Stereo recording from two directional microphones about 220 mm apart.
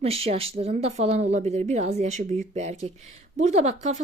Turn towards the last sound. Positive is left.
turn(degrees=-30)  # may be behind; listen again after turning